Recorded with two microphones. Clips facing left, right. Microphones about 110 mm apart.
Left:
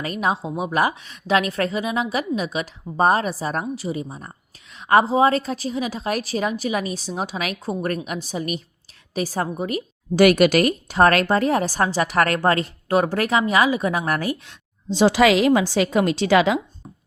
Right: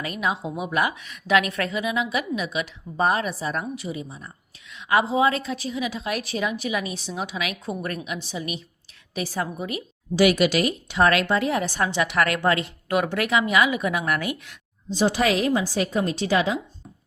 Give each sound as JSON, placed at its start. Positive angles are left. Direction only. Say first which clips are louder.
{"t": 0.0, "sound": "a woman's voice", "louder": "left 3 dB", "side_deg": 40}
{"t": 14.8, "sound": "a woman's voice", "louder": "left 5 dB", "side_deg": 90}